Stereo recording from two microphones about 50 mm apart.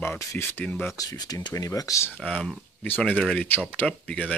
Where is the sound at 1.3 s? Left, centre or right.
Left.